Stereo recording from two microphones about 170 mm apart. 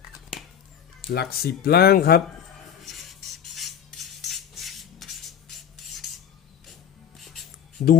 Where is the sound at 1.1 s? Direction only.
65° left (ahead or behind).